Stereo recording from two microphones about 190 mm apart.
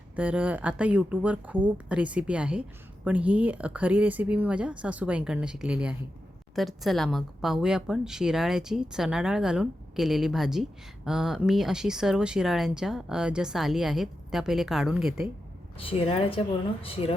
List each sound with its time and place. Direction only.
0.2 s a woman's voice: 5° right (ahead or behind)
15.8 s a woman's voice: 30° left (ahead or behind)